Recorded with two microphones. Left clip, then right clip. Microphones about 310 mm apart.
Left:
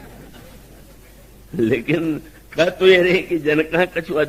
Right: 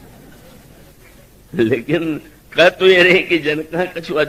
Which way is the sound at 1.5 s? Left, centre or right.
Right.